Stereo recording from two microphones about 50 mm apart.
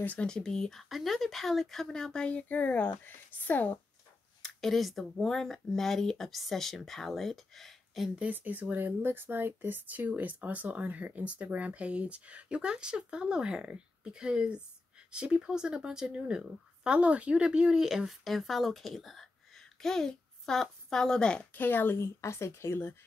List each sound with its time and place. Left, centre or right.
0.5 s speech: centre
0.8 s speech: centre
2.2 s speech: left
4.4 s a sound: centre
5.2 s speech: centre
8.2 s a child's voice: right; by 21.5 s centre
21.5 s speech: left
21.9 s speech: left